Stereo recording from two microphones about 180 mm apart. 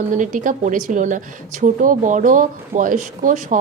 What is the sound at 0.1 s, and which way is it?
A woman's voice, 45° right (ahead or behind).